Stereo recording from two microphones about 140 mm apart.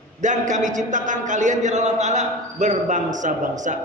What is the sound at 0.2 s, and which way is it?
A man's voice, 60° right (ahead or behind).